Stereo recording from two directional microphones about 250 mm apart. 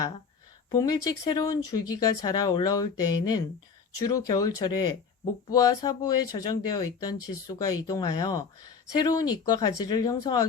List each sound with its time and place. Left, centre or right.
0.7 s speech: centre